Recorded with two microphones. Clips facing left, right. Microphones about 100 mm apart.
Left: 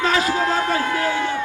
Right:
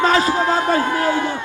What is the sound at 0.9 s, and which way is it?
Speech, 45° right (ahead or behind).